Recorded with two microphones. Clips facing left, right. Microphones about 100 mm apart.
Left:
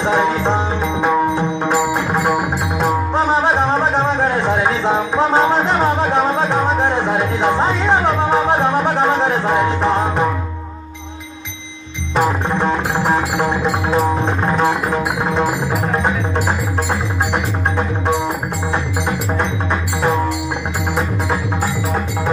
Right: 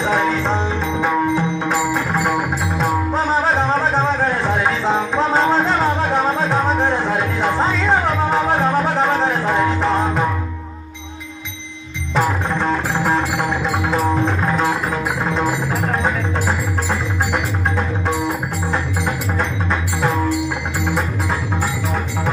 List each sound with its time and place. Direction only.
0.1 s music: 20° left (ahead or behind)
2.2 s music: 10° left (ahead or behind)
4.8 s music: 20° left (ahead or behind)
6.8 s music: 20° left (ahead or behind)
12.2 s music: 20° left (ahead or behind)
19.3 s music: 15° left (ahead or behind)